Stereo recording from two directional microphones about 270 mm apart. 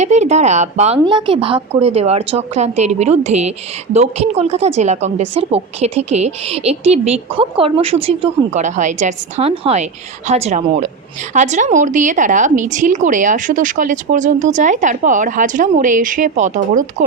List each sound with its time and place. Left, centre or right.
0.0 s a woman's voice: right